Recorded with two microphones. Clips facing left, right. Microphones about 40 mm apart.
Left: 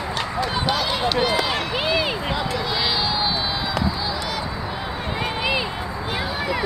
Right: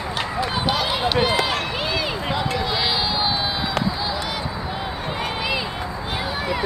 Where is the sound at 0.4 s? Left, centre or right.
Centre.